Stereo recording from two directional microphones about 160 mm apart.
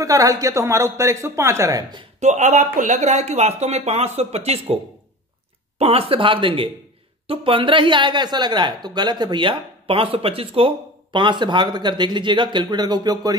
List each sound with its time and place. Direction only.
0.0 s speech: 20° right (ahead or behind)
2.1 s speech: 45° right (ahead or behind)
5.8 s speech: 40° right (ahead or behind)